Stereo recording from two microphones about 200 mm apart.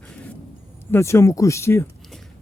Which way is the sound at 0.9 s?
15° left (ahead or behind).